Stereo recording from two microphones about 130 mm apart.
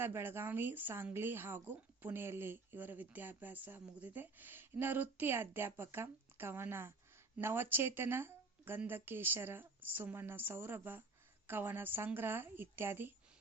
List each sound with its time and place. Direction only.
0.0 s speech: 15° right (ahead or behind)